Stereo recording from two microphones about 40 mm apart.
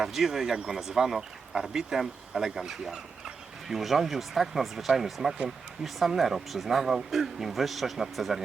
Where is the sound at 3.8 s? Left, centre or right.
Centre.